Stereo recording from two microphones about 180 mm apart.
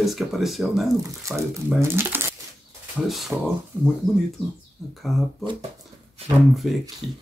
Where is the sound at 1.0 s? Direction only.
15° right (ahead or behind).